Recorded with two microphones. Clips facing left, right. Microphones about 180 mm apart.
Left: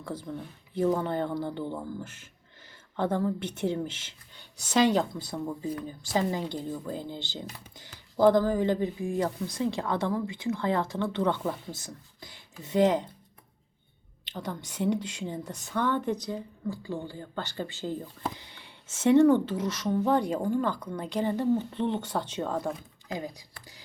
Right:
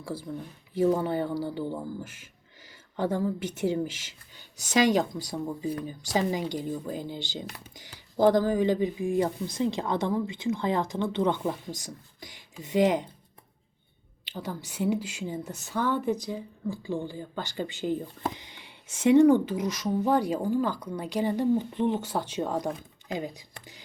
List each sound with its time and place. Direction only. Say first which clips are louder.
0.0 s a woman's voice: right 1 dB; 10° right (ahead or behind)
14.3 s a woman's voice: even; 10° right (ahead or behind)